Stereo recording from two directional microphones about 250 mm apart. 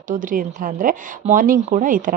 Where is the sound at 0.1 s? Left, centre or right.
Right.